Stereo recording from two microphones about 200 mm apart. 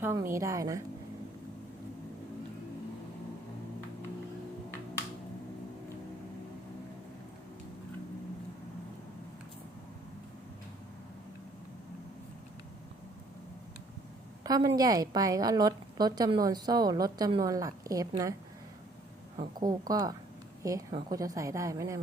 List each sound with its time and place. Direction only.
0.0 s a woman's voice: 10° right (ahead or behind)
14.4 s a sound: 20° right (ahead or behind)
14.8 s a woman's voice: 20° right (ahead or behind)
19.5 s a woman's voice: 20° right (ahead or behind)